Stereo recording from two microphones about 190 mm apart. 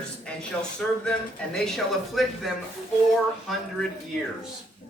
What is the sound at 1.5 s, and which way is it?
Speech, 5° left (ahead or behind).